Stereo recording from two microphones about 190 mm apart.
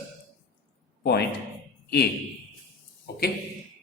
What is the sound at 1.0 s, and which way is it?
Speech, 60° left (ahead or behind).